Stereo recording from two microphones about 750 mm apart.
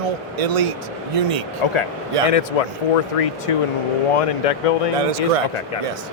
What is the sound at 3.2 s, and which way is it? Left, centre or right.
Speech, left.